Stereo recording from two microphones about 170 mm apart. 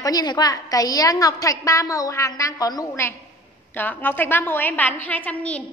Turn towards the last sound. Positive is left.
turn(degrees=10)  # may be behind; listen again after turning